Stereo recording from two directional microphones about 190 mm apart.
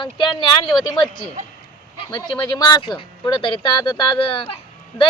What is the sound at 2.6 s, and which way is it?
Speech, 25° left (ahead or behind).